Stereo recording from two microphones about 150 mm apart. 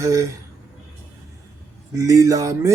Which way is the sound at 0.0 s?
20° right (ahead or behind).